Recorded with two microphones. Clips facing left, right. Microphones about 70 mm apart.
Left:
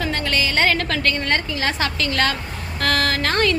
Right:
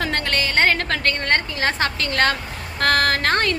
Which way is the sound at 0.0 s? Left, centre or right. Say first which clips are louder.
Even; right.